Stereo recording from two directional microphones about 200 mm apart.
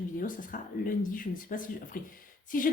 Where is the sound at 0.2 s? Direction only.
45° left (ahead or behind).